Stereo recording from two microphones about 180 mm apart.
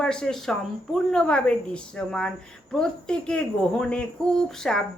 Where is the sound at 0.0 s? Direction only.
5° left (ahead or behind).